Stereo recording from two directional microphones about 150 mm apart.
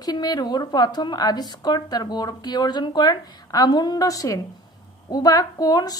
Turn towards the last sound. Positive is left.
turn(degrees=25)  # may be behind; listen again after turning